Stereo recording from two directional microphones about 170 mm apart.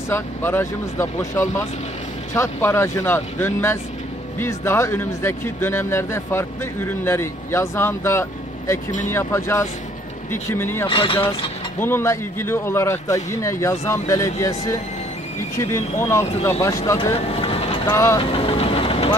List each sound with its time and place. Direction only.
0.1 s speech: 15° left (ahead or behind)
10.9 s speech: 30° left (ahead or behind)
11.8 s speech: 15° left (ahead or behind)
17.0 s vehicle: 35° left (ahead or behind)
17.8 s speech: 15° left (ahead or behind)
18.2 s vehicle: 35° left (ahead or behind)